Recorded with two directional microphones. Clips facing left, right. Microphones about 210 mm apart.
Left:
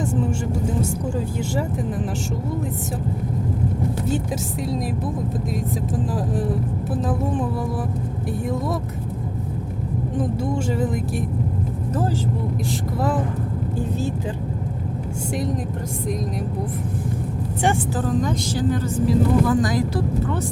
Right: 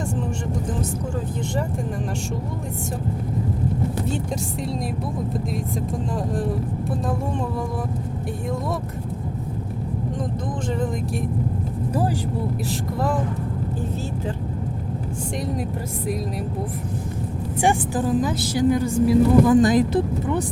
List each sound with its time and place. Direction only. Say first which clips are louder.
6.9 s speech: left 3 dB; 5° left (ahead or behind)
10.8 s speech: left 2 dB; 5° left (ahead or behind)
17.6 s speech: right 1 dB; 15° right (ahead or behind)
19.5 s speech: right 5 dB; 20° right (ahead or behind)